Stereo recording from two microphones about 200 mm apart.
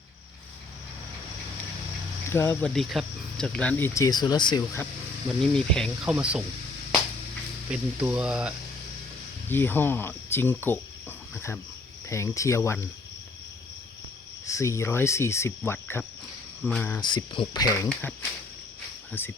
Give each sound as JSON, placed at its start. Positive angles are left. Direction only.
{"t": 2.3, "sound": "speech", "side_deg": 10}
{"t": 5.4, "sound": "speech", "side_deg": 5}
{"t": 7.7, "sound": "speech", "side_deg": -5}
{"t": 9.5, "sound": "speech", "side_deg": 10}
{"t": 12.0, "sound": "speech", "side_deg": 15}
{"t": 14.4, "sound": "speech", "side_deg": 15}
{"t": 17.0, "sound": "speech", "side_deg": 20}
{"t": 19.2, "sound": "speech", "side_deg": 10}